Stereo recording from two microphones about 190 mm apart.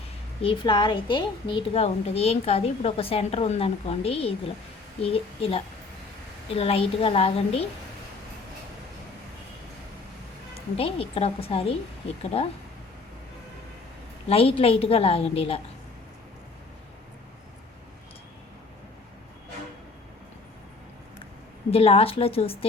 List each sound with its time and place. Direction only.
0.4 s a woman's voice: 25° left (ahead or behind)
10.8 s a woman's voice: 30° left (ahead or behind)
14.3 s a woman's voice: 30° left (ahead or behind)
21.7 s a woman's voice: 30° left (ahead or behind)